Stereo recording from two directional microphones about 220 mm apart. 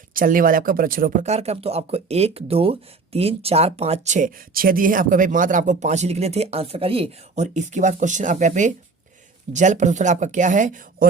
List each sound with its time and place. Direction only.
0.1 s speech: 40° right (ahead or behind)